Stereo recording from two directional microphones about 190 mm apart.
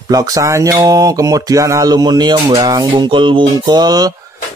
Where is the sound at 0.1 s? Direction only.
20° right (ahead or behind).